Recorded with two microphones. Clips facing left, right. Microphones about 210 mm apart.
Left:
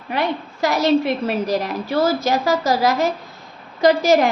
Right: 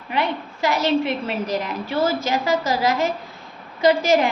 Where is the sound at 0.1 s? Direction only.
40° left (ahead or behind).